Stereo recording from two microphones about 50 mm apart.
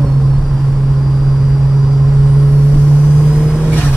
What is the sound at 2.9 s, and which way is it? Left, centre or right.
Vehicle, centre.